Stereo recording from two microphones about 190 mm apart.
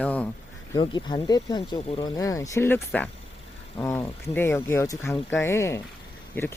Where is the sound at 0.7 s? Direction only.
25° left (ahead or behind).